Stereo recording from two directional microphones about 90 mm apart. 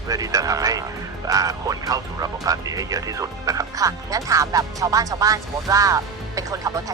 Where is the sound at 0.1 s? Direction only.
40° right (ahead or behind).